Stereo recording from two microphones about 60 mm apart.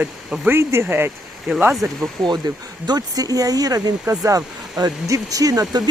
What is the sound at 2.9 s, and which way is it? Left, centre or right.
Speech, right.